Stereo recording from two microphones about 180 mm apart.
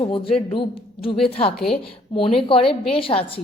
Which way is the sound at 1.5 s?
5° left (ahead or behind).